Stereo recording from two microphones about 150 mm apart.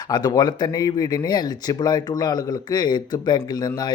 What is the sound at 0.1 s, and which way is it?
Speech, 25° left (ahead or behind).